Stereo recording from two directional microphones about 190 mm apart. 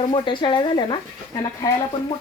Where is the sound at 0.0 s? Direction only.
25° left (ahead or behind).